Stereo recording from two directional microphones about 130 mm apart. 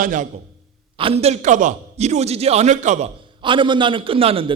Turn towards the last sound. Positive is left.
turn(degrees=-45)  # may be behind; listen again after turning